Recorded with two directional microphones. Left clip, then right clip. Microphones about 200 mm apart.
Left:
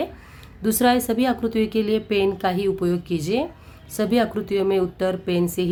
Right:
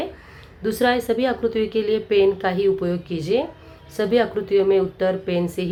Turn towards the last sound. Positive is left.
turn(degrees=35)  # may be behind; listen again after turning